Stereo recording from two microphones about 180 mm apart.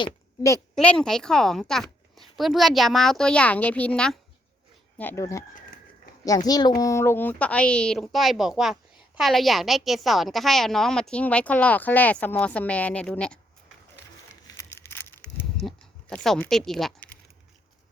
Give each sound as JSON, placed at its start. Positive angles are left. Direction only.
{"t": 0.0, "sound": "a woman's voice", "side_deg": 15}
{"t": 0.8, "sound": "speech", "side_deg": 5}
{"t": 6.5, "sound": "a child's voice", "side_deg": 25}
{"t": 14.4, "sound": "a sound", "side_deg": 15}
{"t": 15.6, "sound": "speech", "side_deg": 5}